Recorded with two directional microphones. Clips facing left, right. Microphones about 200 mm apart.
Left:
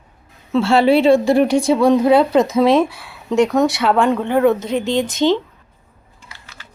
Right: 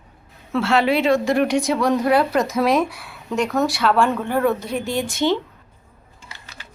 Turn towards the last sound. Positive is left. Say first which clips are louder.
# even
turn(degrees=-20)  # may be behind; listen again after turning